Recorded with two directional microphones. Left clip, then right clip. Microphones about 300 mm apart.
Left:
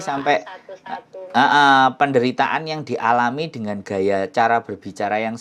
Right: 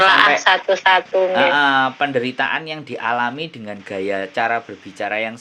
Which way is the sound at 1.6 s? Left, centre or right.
Left.